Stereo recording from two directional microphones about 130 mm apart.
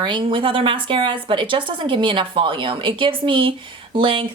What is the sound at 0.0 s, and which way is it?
A woman's voice, 40° right (ahead or behind).